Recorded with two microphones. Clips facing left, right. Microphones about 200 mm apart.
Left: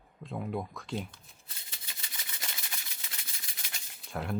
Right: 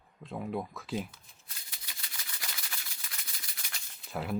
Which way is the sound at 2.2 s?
25° left (ahead or behind).